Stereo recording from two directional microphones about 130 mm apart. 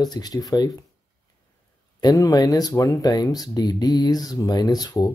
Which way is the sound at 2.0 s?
30° left (ahead or behind).